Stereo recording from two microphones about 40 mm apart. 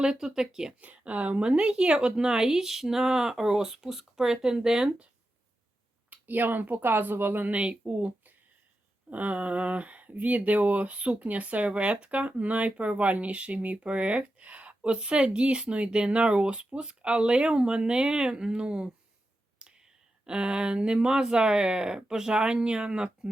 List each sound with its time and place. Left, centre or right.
0.0 s speech: centre
0.8 s speech: right; by 4.9 s centre
6.1 s speech: right
7.5 s speech: right
9.0 s speech: right
20.2 s speech: right